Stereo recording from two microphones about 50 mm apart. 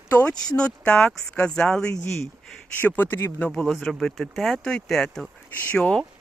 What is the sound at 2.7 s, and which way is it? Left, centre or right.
Speech, left.